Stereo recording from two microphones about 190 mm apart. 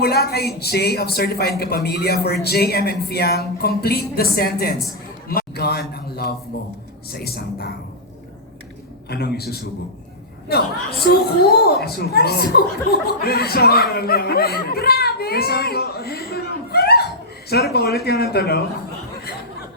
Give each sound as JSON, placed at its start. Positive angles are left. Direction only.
{"t": 0.0, "sound": "a man's voice", "side_deg": 55}
{"t": 9.0, "sound": "speech", "side_deg": 55}
{"t": 11.0, "sound": "speech", "side_deg": 55}